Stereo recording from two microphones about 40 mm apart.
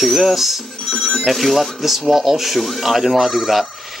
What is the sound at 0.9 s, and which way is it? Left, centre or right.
Speech, centre.